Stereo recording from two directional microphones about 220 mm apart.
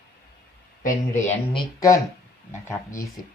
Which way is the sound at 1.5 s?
20° left (ahead or behind).